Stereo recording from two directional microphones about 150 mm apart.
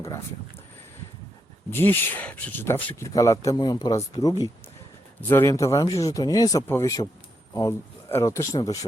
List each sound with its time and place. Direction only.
1.7 s speech: 15° left (ahead or behind)